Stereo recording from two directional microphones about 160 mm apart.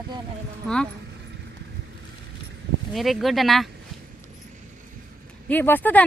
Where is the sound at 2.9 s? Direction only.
Centre (ahead or behind).